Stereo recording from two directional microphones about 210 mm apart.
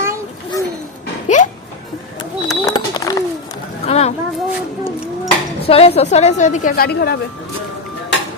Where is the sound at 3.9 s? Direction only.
30° left (ahead or behind).